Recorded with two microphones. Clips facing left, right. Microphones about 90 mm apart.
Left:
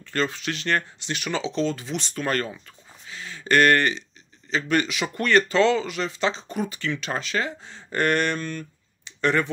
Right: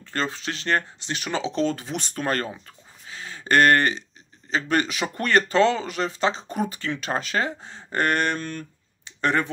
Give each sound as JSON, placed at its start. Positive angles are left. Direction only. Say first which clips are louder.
{"t": 0.0, "sound": "speech", "louder": "left 2 dB", "side_deg": -30}